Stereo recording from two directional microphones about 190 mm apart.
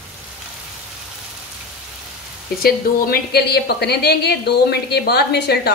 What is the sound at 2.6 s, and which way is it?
A woman's voice, 55° left (ahead or behind).